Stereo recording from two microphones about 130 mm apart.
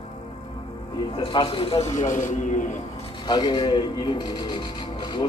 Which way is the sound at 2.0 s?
75° left (ahead or behind).